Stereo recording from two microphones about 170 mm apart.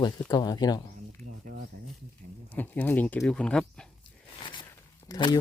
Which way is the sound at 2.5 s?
10° left (ahead or behind).